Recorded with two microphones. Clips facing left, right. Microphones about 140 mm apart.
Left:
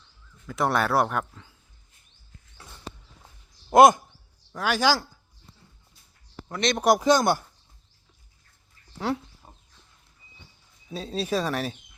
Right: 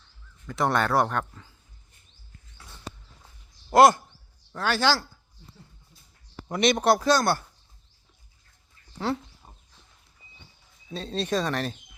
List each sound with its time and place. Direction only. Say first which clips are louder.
0.4 s speech: even; centre (ahead or behind)
3.2 s a sound: left 3 dB; 20° left (ahead or behind)
4.5 s speech: left 1 dB; 10° left (ahead or behind)
6.5 s speech: right 4 dB; 10° right (ahead or behind)
6.7 s speech: left 5 dB; 15° left (ahead or behind)
8.9 s a sound: even; 5° left (ahead or behind)
10.8 s speech: even; 5° left (ahead or behind)